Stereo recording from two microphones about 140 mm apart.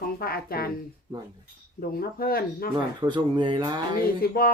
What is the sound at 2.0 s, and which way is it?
Speech, 90° left.